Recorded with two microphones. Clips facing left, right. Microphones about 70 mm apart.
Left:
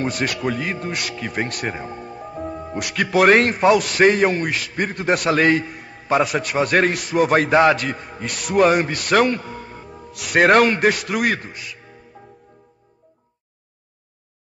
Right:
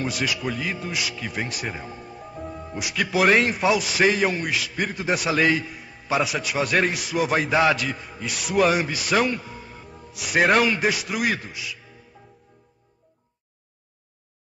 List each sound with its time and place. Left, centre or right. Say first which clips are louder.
0.0 s a man's voice: left 4 dB; left
1.7 s music: left 5 dB; centre
2.9 s a man's voice: left 5 dB; left
9.3 s speech: left 5 dB; centre
9.7 s music: left 5 dB; centre
10.5 s a man's voice: left 5 dB; left